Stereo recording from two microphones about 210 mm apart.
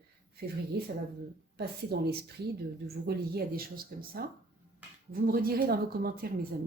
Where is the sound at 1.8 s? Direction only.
50° right (ahead or behind).